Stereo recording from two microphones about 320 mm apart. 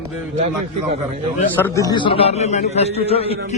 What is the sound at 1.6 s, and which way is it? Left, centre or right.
A man's voice, centre.